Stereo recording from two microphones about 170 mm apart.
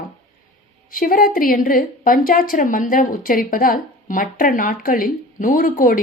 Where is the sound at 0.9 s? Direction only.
55° left (ahead or behind).